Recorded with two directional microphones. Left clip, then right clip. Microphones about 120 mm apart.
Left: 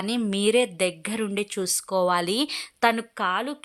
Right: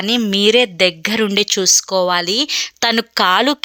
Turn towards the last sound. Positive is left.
turn(degrees=-45)  # may be behind; listen again after turning